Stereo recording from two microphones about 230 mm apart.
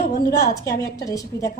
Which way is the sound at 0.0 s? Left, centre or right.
Left.